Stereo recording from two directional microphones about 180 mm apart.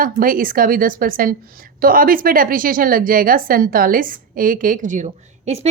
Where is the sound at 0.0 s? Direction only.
50° right (ahead or behind).